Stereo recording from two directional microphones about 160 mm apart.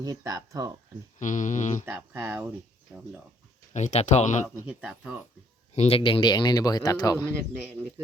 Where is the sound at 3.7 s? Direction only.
45° left (ahead or behind).